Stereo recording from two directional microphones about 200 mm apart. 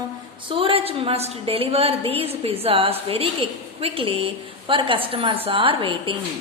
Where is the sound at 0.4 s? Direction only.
25° right (ahead or behind).